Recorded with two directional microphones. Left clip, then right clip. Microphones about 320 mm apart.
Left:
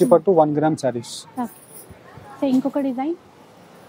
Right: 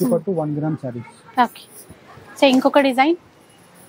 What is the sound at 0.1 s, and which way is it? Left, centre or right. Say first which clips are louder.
Speech: left 7 dB; left.